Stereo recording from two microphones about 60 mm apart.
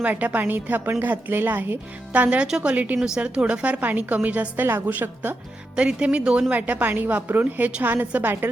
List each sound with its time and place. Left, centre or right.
0.0 s a woman's voice: right
2.1 s a woman's voice: right
5.7 s speech: centre
6.5 s a woman's voice: right